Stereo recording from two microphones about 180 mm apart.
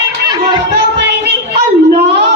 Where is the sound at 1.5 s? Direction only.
70° right (ahead or behind).